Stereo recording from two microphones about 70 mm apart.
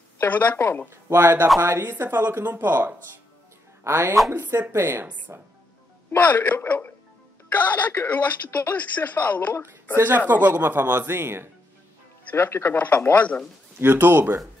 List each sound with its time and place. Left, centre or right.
0.2 s speech: left
0.8 s speech: right
3.8 s speech: right
6.1 s speech: left
9.9 s speech: right
12.3 s speech: left
13.7 s speech: right